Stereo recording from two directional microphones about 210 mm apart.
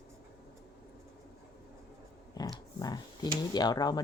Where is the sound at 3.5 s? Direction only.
20° left (ahead or behind).